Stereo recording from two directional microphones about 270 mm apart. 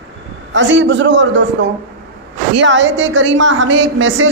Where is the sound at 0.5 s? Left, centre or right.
Right.